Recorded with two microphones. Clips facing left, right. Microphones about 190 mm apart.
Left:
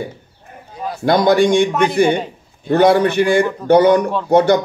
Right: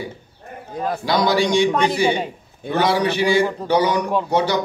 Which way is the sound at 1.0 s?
55° left (ahead or behind).